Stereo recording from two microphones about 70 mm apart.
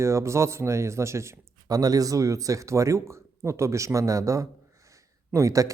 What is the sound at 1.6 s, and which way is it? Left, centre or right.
Speech, right.